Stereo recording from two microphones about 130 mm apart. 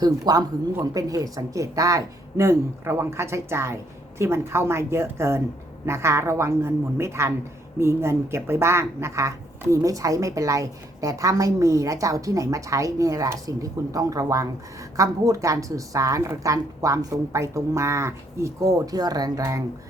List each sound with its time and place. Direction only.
0.0 s speech: 30° right (ahead or behind)